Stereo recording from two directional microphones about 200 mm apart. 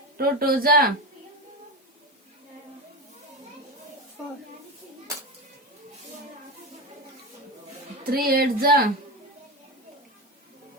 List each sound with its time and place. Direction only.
0.2 s speech: 50° right (ahead or behind)
8.1 s speech: 50° right (ahead or behind)